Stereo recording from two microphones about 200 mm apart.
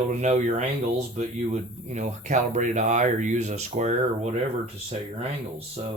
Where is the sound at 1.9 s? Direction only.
35° right (ahead or behind).